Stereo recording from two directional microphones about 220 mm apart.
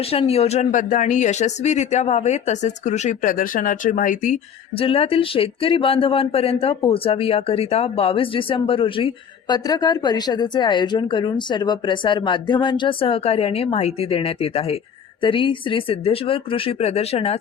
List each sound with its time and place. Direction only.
0.0 s speech: 25° left (ahead or behind)